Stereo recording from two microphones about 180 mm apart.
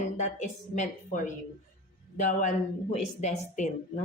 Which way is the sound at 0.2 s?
45° left (ahead or behind).